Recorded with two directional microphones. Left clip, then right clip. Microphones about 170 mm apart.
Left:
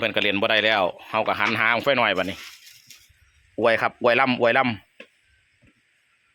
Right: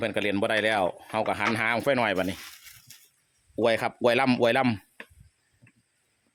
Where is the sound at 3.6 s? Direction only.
10° right (ahead or behind).